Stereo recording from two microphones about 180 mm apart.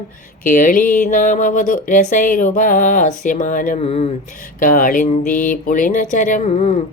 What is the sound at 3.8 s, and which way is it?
Speech, 35° left (ahead or behind).